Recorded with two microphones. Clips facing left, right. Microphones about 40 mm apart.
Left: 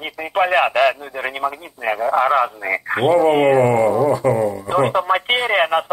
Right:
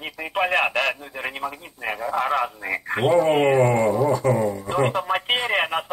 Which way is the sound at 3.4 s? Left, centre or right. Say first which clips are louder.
Left 4 dB; centre.